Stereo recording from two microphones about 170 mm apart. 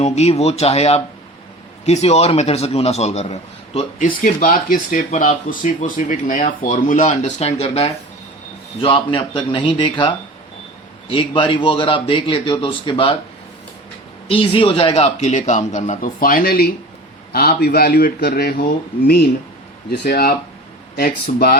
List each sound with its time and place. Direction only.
0.0 s a man's voice: 40° left (ahead or behind)
3.9 s a man's voice: 50° left (ahead or behind); by 13.1 s 30° left (ahead or behind)
14.3 s a man's voice: 30° left (ahead or behind); by 18.6 s 65° left (ahead or behind)
20.1 s a man's voice: 65° left (ahead or behind)